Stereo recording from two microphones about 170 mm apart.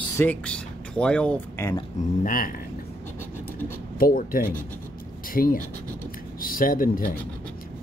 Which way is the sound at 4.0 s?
55° left (ahead or behind).